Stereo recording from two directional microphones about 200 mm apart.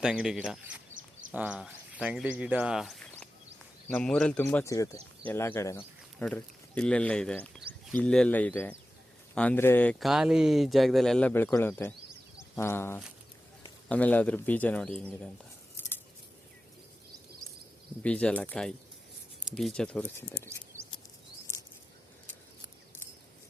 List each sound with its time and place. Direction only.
0.0 s speech: 5° right (ahead or behind)
15.7 s scissors: 10° left (ahead or behind)
18.0 s speech: 5° left (ahead or behind)
20.7 s a sound: 40° right (ahead or behind)